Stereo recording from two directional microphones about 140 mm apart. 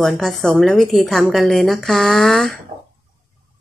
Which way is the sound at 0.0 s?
Centre (ahead or behind).